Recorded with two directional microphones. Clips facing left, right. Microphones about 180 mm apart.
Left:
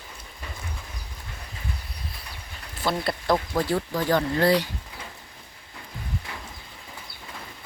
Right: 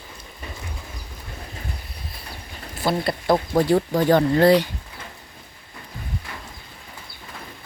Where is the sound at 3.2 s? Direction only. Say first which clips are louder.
Right 6 dB; 25° right (ahead or behind).